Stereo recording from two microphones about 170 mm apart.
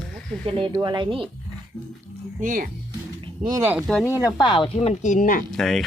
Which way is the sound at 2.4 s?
50° right (ahead or behind).